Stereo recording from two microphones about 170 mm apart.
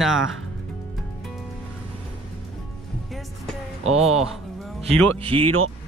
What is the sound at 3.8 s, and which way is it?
Speech, 40° right (ahead or behind).